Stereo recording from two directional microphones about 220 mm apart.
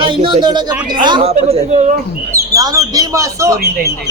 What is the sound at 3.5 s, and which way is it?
Speech, 45° right (ahead or behind).